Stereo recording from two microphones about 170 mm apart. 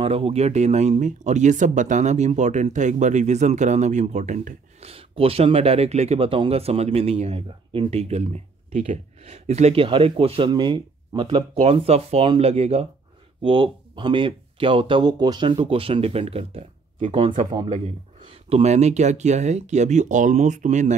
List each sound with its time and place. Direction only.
0.0 s speech: 35° right (ahead or behind)